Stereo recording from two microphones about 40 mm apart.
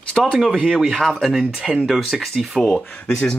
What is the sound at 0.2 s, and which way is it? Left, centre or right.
Speech, centre.